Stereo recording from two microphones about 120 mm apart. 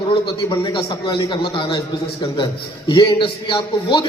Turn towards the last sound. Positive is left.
turn(degrees=45)  # may be behind; listen again after turning